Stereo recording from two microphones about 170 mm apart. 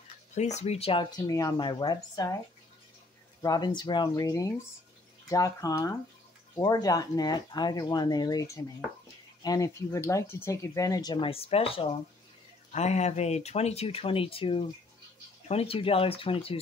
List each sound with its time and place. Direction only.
0.3 s speech: 40° left (ahead or behind); by 2.3 s 25° left (ahead or behind)
3.4 s speech: 25° left (ahead or behind)